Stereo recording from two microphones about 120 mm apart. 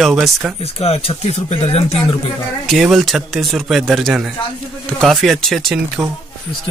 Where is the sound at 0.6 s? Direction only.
60° left (ahead or behind).